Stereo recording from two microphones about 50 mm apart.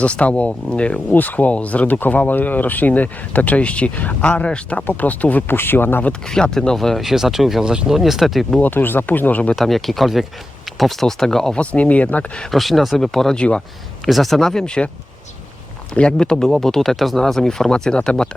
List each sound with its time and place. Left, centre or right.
0.0 s speech: left
1.1 s speech: left; by 4.9 s centre
4.9 s speech: left
5.5 s speech: left
6.2 s speech: centre
7.6 s speech: centre
7.9 s speech: centre
8.6 s speech: left
9.6 s speech: centre
11.5 s speech: left
12.5 s speech: centre
14.6 s speech: centre
16.0 s speech: centre